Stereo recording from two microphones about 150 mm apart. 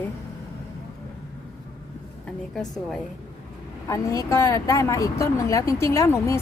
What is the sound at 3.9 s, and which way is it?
Speech, 20° left (ahead or behind).